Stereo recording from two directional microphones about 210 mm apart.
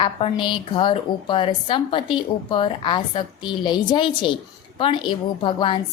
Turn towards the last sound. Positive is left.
turn(degrees=20)  # may be behind; listen again after turning